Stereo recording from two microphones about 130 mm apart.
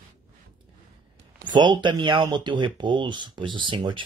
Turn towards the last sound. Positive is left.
turn(degrees=-40)  # may be behind; listen again after turning